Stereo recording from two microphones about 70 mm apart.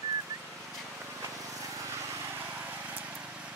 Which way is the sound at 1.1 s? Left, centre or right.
Right.